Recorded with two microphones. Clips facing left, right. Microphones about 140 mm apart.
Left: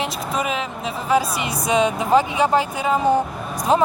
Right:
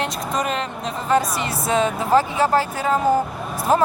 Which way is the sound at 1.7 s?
15° left (ahead or behind).